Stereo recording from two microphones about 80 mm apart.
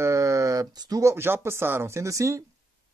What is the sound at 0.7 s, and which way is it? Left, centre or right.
Speech, right.